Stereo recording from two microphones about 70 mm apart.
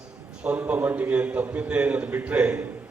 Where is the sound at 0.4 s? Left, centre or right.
Right.